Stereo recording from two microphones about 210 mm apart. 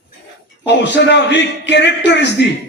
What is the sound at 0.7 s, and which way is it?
A man's voice, 55° left (ahead or behind).